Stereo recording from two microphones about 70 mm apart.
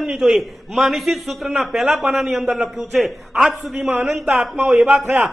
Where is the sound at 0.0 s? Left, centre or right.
Centre.